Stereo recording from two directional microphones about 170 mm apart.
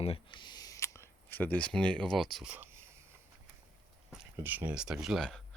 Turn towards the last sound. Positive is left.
turn(degrees=0)  # may be behind; listen again after turning